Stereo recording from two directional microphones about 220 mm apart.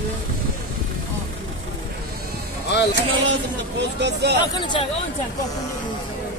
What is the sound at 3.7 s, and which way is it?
Speech, 50° right (ahead or behind).